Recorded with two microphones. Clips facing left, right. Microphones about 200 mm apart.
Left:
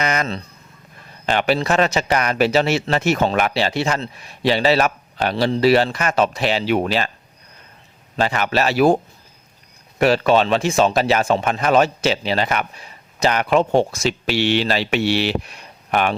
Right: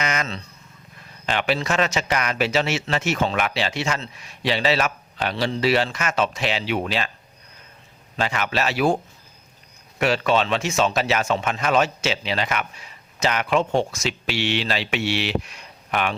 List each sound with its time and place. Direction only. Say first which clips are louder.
0.0 s a sound: left 4 dB; 35° left (ahead or behind)
1.3 s speech: left 5 dB; 40° left (ahead or behind)
8.1 s speech: left 5 dB; 40° left (ahead or behind)
10.0 s speech: left 5 dB; 40° left (ahead or behind)